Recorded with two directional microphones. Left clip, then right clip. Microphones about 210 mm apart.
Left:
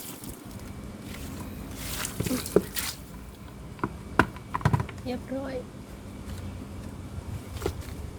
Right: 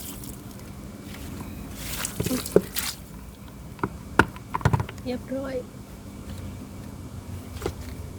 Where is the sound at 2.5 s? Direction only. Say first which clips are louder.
Right 3 dB; 35° right (ahead or behind).